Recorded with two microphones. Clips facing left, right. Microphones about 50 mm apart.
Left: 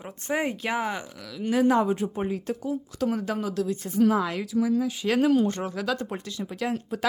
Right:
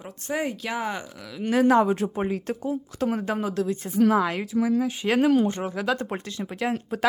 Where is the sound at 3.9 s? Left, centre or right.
Right.